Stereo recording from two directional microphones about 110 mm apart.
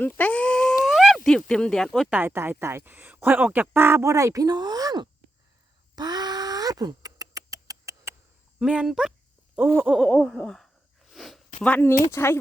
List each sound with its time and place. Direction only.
0.0 s speech: 15° left (ahead or behind)
0.9 s speech: 5° right (ahead or behind)
2.0 s speech: 15° right (ahead or behind); by 5.0 s 35° right (ahead or behind)
6.0 s a sound: 40° right (ahead or behind)
8.5 s speech: 5° right (ahead or behind)
9.6 s speech: 15° right (ahead or behind)
10.0 s a sound: 5° left (ahead or behind)
11.6 s speech: 15° left (ahead or behind)